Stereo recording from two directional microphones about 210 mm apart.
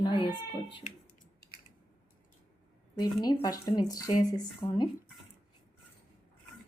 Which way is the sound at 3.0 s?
20° left (ahead or behind).